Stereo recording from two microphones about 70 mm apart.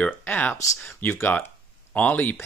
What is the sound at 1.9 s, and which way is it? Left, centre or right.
Speech, left.